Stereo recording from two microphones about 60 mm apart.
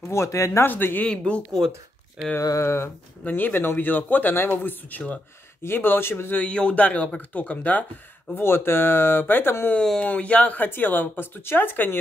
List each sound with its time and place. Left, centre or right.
0.1 s speech: left
0.7 s speech: left
1.0 s speech: centre
2.6 s speech: left
3.3 s speech: left
6.3 s speech: centre
8.4 s speech: left
9.8 s speech: centre
10.0 s speech: left